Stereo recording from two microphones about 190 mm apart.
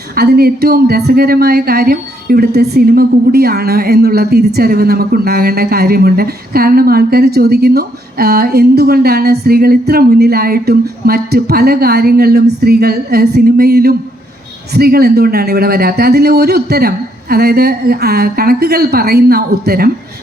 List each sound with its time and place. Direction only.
0.2 s speech: 55° right (ahead or behind)